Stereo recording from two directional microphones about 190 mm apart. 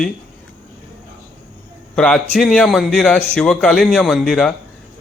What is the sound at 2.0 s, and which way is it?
A man's voice, 5° left (ahead or behind).